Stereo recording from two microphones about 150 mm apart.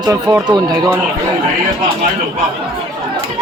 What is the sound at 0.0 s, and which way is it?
Speech, 20° right (ahead or behind).